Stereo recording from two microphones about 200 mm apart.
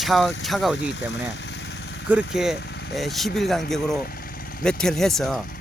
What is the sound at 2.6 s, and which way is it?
Vehicle, 55° left (ahead or behind).